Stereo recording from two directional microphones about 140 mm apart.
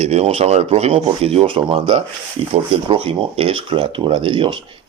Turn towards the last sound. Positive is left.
turn(degrees=-35)  # may be behind; listen again after turning